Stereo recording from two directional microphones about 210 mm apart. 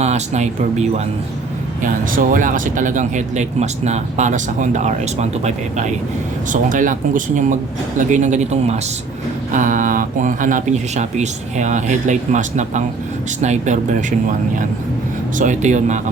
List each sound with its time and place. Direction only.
0.0 s speech: 35° right (ahead or behind)